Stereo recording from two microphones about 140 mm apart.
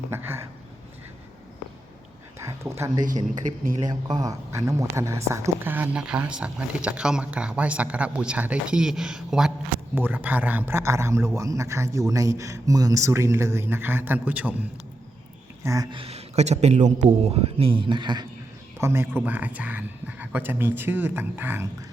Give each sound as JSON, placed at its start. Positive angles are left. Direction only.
{"t": 0.1, "sound": "a sound", "side_deg": -15}
{"t": 2.4, "sound": "a sound", "side_deg": -20}
{"t": 3.4, "sound": "speech", "side_deg": -60}
{"t": 3.8, "sound": "a man's voice", "side_deg": -30}
{"t": 15.6, "sound": "a man's voice", "side_deg": -25}
{"t": 15.9, "sound": "a man's voice", "side_deg": -45}
{"t": 18.8, "sound": "speech", "side_deg": -20}